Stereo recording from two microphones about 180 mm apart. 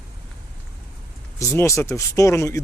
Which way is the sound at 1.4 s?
15° left (ahead or behind).